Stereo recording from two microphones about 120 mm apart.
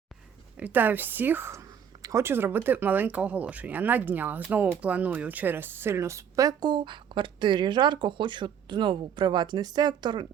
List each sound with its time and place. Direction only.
0.6 s speech: 15° right (ahead or behind); by 10.2 s 40° right (ahead or behind)